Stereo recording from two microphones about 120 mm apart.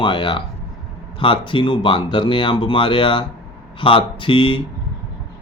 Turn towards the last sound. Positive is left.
turn(degrees=45)  # may be behind; listen again after turning